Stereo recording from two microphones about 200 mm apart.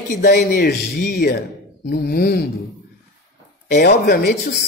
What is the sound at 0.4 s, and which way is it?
Speech, 55° left (ahead or behind).